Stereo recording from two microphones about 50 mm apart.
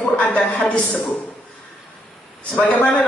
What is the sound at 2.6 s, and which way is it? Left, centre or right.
Speech, left.